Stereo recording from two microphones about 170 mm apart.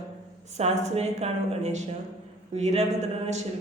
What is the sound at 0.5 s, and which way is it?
A woman's voice, 40° right (ahead or behind).